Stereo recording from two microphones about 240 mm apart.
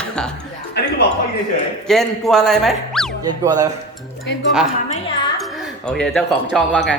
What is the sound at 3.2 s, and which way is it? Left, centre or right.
Speech, centre.